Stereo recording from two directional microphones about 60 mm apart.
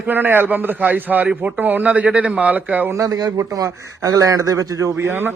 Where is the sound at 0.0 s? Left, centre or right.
Right.